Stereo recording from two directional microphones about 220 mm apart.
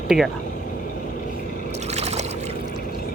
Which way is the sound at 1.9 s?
30° right (ahead or behind).